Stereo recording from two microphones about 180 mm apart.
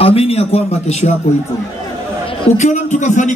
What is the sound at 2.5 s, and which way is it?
Speech, 40° left (ahead or behind).